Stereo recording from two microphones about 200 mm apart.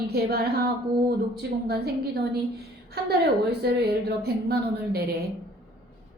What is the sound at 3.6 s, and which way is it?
Speech, 55° right (ahead or behind).